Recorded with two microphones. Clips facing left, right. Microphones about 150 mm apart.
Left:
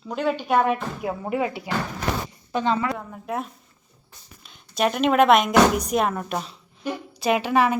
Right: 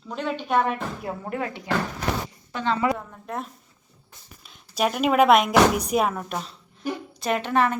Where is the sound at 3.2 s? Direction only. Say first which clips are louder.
Left 4 dB; 5° left (ahead or behind).